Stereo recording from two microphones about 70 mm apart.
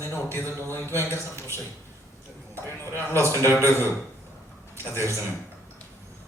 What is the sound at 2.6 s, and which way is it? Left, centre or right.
Speech, left.